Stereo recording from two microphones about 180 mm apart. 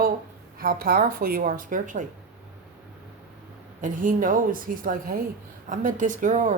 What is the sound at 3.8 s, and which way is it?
Speech, 50° right (ahead or behind).